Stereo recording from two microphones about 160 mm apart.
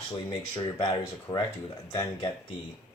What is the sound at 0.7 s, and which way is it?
Speech, 30° left (ahead or behind).